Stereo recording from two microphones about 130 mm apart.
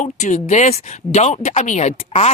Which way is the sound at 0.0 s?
65° left (ahead or behind).